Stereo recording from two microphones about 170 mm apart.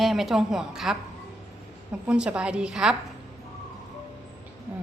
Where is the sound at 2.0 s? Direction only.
5° right (ahead or behind).